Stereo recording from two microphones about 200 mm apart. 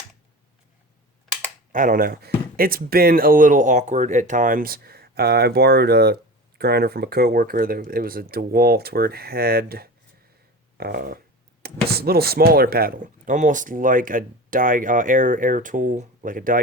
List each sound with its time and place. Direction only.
1.7 s speech: 40° right (ahead or behind)
10.8 s a sound: 50° right (ahead or behind)
11.6 s speech: 50° right (ahead or behind)